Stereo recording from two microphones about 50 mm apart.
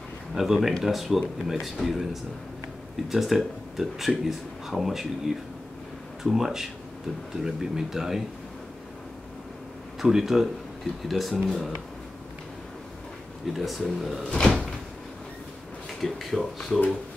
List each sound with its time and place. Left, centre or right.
0.3 s speech: centre
3.1 s speech: centre
9.9 s speech: centre
13.5 s speech: centre
14.4 s door: centre
15.9 s speech: centre